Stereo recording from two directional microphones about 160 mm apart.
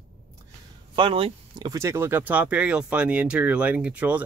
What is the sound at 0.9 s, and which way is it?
Speech, 35° right (ahead or behind).